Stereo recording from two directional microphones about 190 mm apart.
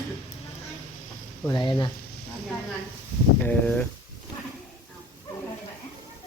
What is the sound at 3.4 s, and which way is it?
Speech, 10° left (ahead or behind).